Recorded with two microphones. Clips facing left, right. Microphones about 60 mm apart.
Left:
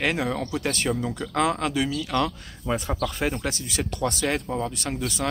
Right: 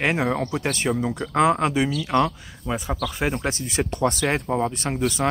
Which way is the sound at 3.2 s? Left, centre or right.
Right.